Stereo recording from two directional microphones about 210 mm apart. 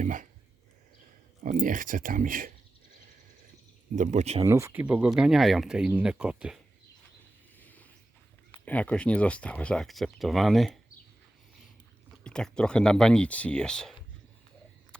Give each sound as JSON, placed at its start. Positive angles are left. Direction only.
{"t": 0.0, "sound": "speech", "side_deg": -40}
{"t": 1.5, "sound": "speech", "side_deg": -40}
{"t": 3.9, "sound": "speech", "side_deg": -35}
{"t": 4.4, "sound": "speech", "side_deg": -15}
{"t": 7.6, "sound": "a sound", "side_deg": 10}
{"t": 8.6, "sound": "speech", "side_deg": 5}
{"t": 12.2, "sound": "speech", "side_deg": 5}